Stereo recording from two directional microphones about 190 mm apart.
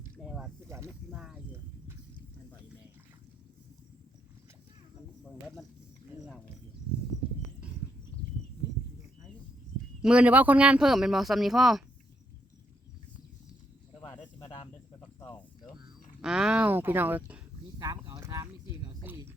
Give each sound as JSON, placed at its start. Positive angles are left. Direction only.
{"t": 0.2, "sound": "mechanisms", "side_deg": 0}
{"t": 1.1, "sound": "a sound", "side_deg": 0}
{"t": 10.0, "sound": "speech", "side_deg": -5}
{"t": 14.3, "sound": "cricket", "side_deg": 20}
{"t": 15.2, "sound": "snake", "side_deg": 15}
{"t": 16.2, "sound": "a sound", "side_deg": -5}